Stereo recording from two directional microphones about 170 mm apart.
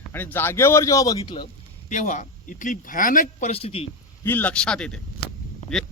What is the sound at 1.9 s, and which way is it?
Speech, 45° left (ahead or behind).